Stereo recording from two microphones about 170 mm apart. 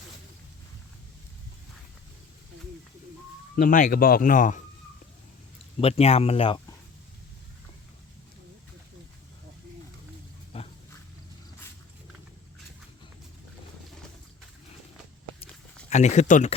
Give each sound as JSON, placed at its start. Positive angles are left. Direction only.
{"t": 3.5, "sound": "speech", "side_deg": 55}
{"t": 5.8, "sound": "speech", "side_deg": 35}
{"t": 10.5, "sound": "dog", "side_deg": 35}
{"t": 15.9, "sound": "speech", "side_deg": 45}